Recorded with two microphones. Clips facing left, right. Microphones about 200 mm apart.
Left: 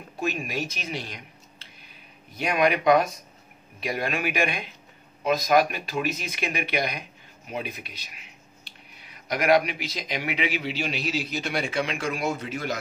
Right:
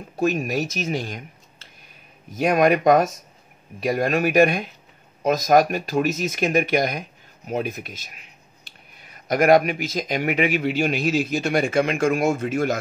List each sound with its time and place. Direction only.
0.1 s speech: 45° right (ahead or behind)